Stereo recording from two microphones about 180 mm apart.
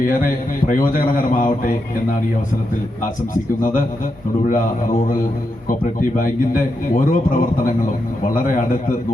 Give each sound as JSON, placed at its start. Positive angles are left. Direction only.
{"t": 0.0, "sound": "a man's voice", "side_deg": 50}
{"t": 3.6, "sound": "a man's voice", "side_deg": 50}